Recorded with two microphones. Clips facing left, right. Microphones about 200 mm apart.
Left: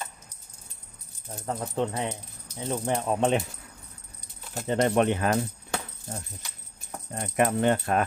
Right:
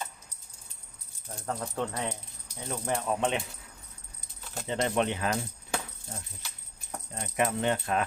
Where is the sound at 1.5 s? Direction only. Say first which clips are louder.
Left 4 dB; 20° left (ahead or behind); by 3.4 s 40° left (ahead or behind).